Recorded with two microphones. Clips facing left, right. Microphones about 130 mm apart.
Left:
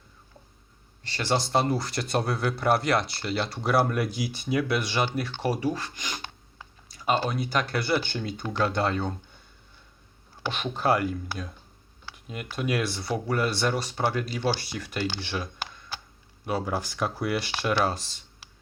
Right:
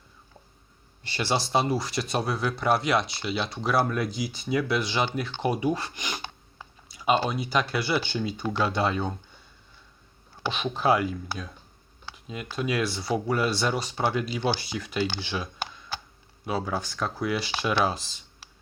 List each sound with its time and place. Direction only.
1.0 s speech: 10° right (ahead or behind)
5.5 s computer keyboard: 15° right (ahead or behind)
7.5 s speech: 5° right (ahead or behind)
10.4 s speech: 5° right (ahead or behind)